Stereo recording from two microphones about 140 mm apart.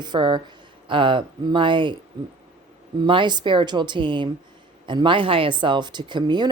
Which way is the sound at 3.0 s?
35° right (ahead or behind).